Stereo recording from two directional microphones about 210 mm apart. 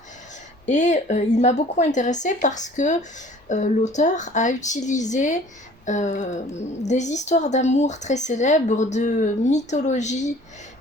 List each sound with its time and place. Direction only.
0.6 s a woman's voice: 35° left (ahead or behind)